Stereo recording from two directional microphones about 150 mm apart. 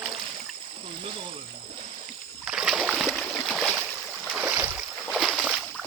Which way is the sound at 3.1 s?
Centre (ahead or behind).